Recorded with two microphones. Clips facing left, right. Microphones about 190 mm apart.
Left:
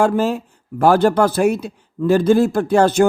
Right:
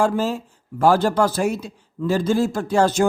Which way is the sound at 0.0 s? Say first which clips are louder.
Left 4 dB; 60° left (ahead or behind).